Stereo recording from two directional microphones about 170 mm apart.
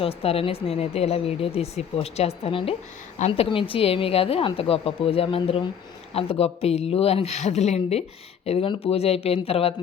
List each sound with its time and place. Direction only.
0.0 s speech: 35° left (ahead or behind)